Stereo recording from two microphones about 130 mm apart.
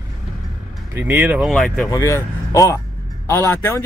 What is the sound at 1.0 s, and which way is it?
Speech, 15° right (ahead or behind).